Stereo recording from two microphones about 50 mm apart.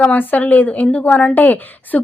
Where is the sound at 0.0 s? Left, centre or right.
Left.